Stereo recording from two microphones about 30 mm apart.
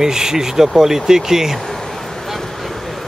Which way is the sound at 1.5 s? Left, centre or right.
Centre.